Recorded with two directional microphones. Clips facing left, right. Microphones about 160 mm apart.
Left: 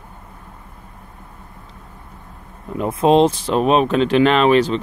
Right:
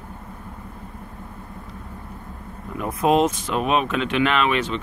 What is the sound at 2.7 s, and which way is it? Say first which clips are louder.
Speech: left 5 dB; 25° left (ahead or behind).